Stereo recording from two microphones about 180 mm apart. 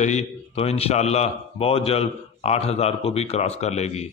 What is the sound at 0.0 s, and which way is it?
A man's voice, 40° left (ahead or behind).